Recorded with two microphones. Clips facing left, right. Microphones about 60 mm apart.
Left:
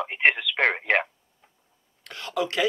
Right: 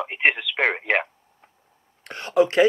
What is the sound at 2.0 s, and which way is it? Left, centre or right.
Speech, right.